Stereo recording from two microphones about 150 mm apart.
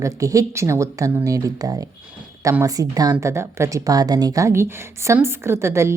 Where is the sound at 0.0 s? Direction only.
20° right (ahead or behind).